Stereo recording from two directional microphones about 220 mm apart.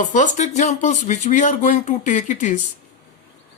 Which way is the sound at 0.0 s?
35° left (ahead or behind).